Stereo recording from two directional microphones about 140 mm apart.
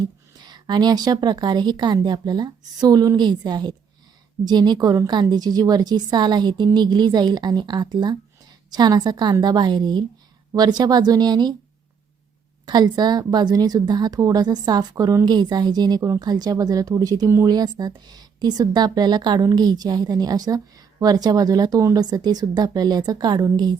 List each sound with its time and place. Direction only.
0.3 s a woman's voice: 30° right (ahead or behind)
12.6 s a woman's voice: 30° right (ahead or behind)